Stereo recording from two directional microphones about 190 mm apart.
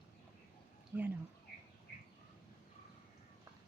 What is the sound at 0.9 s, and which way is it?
Speech, 10° right (ahead or behind).